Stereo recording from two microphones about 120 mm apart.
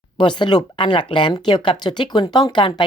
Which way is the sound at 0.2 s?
40° left (ahead or behind).